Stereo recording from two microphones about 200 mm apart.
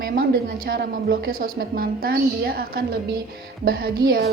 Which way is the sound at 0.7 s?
55° right (ahead or behind).